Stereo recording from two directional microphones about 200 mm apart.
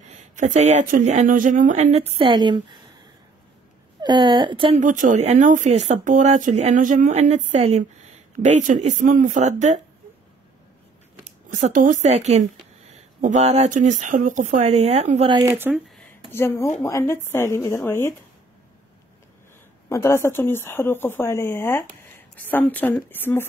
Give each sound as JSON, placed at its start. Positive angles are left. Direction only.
{"t": 0.0, "sound": "speech", "side_deg": -35}
{"t": 4.0, "sound": "a woman's voice", "side_deg": -20}
{"t": 4.8, "sound": "speech", "side_deg": -40}
{"t": 11.2, "sound": "speech", "side_deg": -35}
{"t": 15.4, "sound": "speech", "side_deg": -15}
{"t": 16.3, "sound": "a woman's voice", "side_deg": 10}
{"t": 19.9, "sound": "a woman's voice", "side_deg": 15}